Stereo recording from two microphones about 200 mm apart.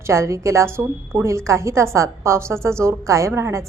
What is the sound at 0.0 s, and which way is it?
A woman's voice, 15° right (ahead or behind).